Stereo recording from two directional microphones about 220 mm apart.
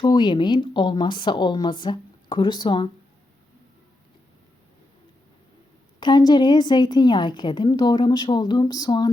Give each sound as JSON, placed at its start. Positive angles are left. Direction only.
{"t": 0.0, "sound": "a woman's voice", "side_deg": 20}
{"t": 6.0, "sound": "a woman's voice", "side_deg": 20}